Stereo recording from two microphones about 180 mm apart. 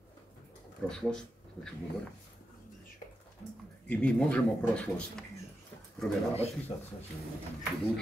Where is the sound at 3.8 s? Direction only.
5° left (ahead or behind).